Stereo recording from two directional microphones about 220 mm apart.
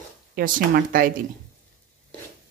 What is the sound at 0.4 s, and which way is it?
Speech, 40° right (ahead or behind).